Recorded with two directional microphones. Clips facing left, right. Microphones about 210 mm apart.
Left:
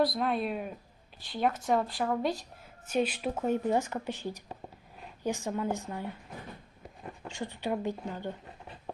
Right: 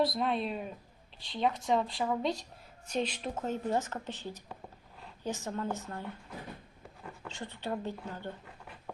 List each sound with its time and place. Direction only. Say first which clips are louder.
0.0 s a woman's voice: left 2 dB; centre (ahead or behind)
7.3 s speech: left 4 dB; 15° left (ahead or behind)